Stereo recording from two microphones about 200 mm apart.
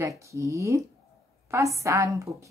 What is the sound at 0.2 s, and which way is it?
Speech, 15° right (ahead or behind).